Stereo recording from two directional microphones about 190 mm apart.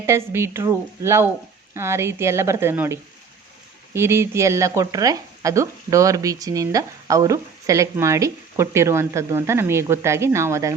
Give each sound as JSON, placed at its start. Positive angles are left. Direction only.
{"t": 0.0, "sound": "speech", "side_deg": -15}